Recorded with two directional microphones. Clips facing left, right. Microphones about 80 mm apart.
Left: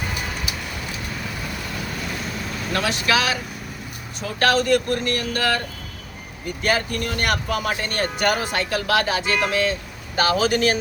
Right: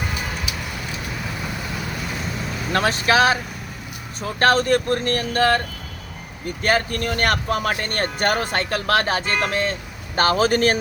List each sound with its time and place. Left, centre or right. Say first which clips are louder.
2.7 s speech: right 4 dB; right
4.4 s speech: right 1 dB; right
6.6 s speech: right 2 dB; right